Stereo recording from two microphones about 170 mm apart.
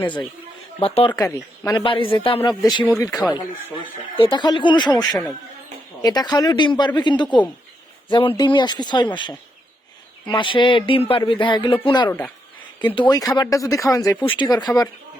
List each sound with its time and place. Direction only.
0.0 s speech: 10° left (ahead or behind)
0.8 s speech: 35° left (ahead or behind)
1.1 s speech: 20° left (ahead or behind)
1.8 s speech: 30° left (ahead or behind)
4.2 s speech: 25° left (ahead or behind)